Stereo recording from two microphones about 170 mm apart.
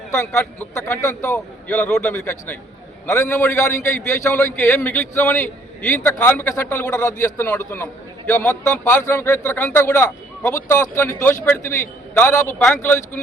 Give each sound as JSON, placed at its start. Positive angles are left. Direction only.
{"t": 0.3, "sound": "a man's voice", "side_deg": 10}